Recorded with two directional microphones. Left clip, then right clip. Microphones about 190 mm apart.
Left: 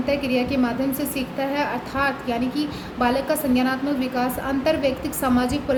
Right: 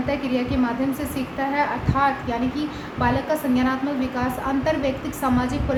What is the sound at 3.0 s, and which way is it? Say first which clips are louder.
A woman's voice: left 1 dB; 30° left (ahead or behind).